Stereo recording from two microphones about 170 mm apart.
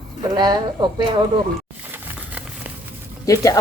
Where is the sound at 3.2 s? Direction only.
20° left (ahead or behind).